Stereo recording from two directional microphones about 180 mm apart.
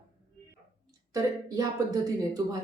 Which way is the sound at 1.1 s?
20° right (ahead or behind).